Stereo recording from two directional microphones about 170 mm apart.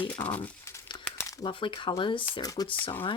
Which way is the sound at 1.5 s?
30° left (ahead or behind).